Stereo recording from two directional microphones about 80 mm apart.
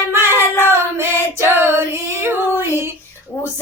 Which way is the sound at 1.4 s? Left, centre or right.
Right.